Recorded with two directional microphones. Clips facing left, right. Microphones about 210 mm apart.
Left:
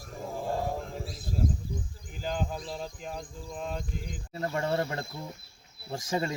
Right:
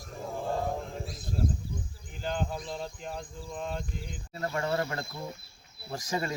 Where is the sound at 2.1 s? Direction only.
5° left (ahead or behind).